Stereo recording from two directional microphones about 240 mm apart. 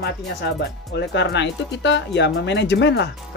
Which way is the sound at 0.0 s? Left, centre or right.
Left.